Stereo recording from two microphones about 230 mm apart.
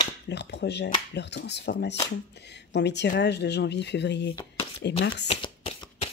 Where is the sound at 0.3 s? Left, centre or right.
Left.